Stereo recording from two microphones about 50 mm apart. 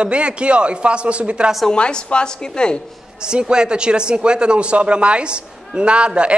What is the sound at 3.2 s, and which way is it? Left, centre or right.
Speech, centre.